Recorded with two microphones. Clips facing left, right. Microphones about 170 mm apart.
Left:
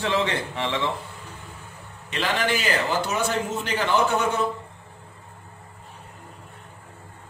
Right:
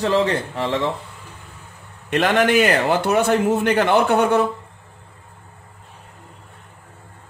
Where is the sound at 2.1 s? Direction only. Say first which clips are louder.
Right 9 dB; 60° right (ahead or behind).